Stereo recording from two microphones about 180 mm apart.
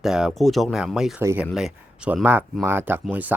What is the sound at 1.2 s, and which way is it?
Speech, 15° right (ahead or behind).